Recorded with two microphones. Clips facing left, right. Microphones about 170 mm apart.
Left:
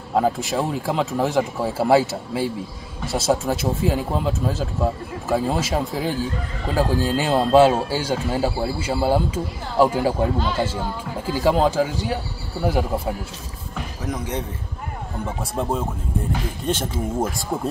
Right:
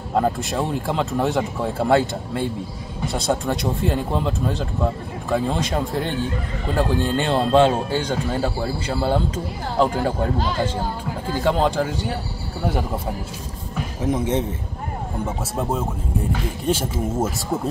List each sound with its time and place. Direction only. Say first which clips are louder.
0.1 s speech: left 1 dB; centre (ahead or behind)
11.4 s speech: left 2 dB; 5° left (ahead or behind)
14.0 s a man's voice: right 6 dB; 25° right (ahead or behind)
15.2 s speech: left 1 dB; 5° right (ahead or behind)